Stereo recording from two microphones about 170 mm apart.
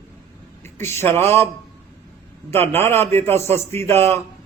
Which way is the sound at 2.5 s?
15° left (ahead or behind).